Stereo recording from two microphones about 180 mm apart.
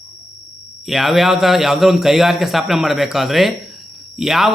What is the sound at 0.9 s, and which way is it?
A man's voice, centre (ahead or behind).